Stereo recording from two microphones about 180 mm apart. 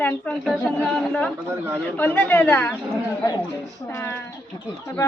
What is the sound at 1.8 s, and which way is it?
A woman's voice, 10° left (ahead or behind).